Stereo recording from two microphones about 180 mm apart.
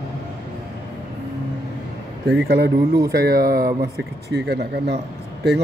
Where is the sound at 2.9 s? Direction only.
20° right (ahead or behind).